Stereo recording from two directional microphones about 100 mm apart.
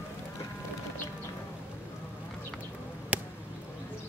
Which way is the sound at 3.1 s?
15° right (ahead or behind).